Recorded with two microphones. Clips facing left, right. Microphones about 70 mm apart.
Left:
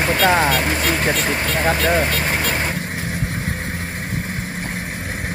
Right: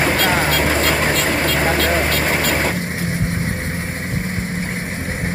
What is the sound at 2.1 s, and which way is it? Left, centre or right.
Vehicle, right.